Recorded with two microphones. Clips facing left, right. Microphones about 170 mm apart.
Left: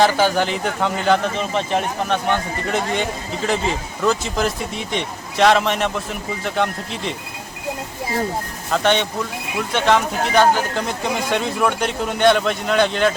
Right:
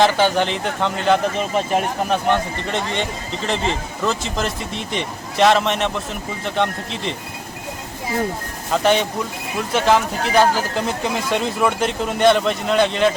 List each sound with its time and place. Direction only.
0.0 s speech: centre (ahead or behind)
8.7 s speech: 5° right (ahead or behind)